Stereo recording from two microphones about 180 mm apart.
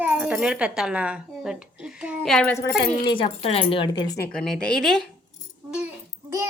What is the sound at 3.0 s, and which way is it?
Speech, 30° left (ahead or behind).